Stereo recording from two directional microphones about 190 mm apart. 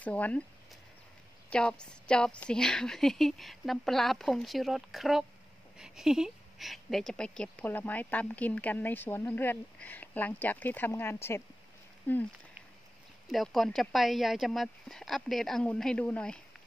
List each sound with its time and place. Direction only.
0.0 s speech: 5° left (ahead or behind)
1.5 s a woman's voice: 5° left (ahead or behind)
13.3 s a woman's voice: centre (ahead or behind)